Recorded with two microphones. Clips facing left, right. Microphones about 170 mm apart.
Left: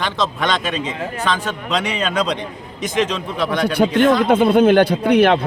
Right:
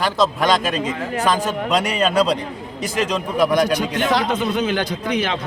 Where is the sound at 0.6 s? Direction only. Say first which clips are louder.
Right 1 dB; 40° right (ahead or behind).